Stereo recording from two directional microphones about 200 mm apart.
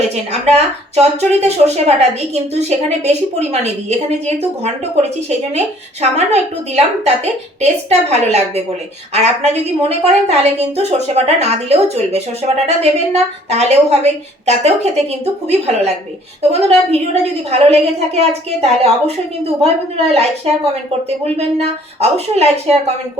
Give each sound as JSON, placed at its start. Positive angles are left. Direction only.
{"t": 0.4, "sound": "a woman's voice", "side_deg": -30}
{"t": 5.5, "sound": "a woman's voice", "side_deg": -35}
{"t": 16.4, "sound": "a woman's voice", "side_deg": -30}